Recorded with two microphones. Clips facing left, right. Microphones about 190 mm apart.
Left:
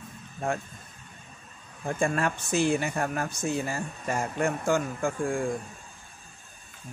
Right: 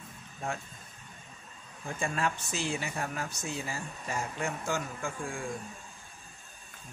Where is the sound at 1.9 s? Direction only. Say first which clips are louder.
Left 6 dB; 50° left (ahead or behind).